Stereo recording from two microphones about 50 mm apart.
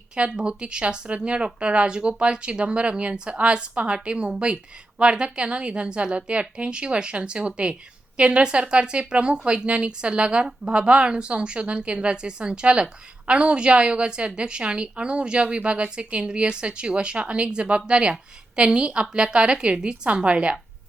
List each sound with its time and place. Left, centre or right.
0.3 s a woman's voice: right